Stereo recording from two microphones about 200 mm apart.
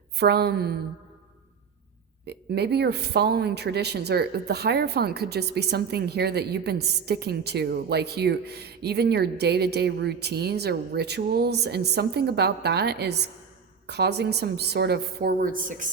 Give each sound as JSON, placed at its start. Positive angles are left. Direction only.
{"t": 0.2, "sound": "a woman's voice", "side_deg": -55}
{"t": 2.2, "sound": "a woman's voice", "side_deg": -55}